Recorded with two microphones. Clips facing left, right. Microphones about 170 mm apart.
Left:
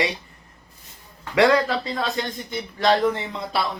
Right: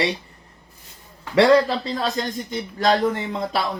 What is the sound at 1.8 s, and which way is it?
A man's voice, 40° right (ahead or behind).